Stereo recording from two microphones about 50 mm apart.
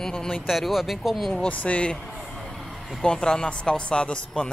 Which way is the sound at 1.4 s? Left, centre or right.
Left.